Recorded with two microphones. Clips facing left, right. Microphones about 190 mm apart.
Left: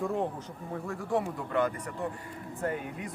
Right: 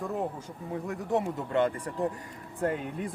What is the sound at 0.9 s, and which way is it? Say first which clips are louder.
A man's voice: right 1 dB; 20° right (ahead or behind).